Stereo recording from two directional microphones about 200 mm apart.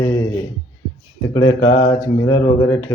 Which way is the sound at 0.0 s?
15° left (ahead or behind).